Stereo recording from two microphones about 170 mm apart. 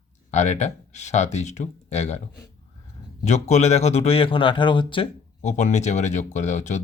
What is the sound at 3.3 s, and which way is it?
Speech, 40° left (ahead or behind).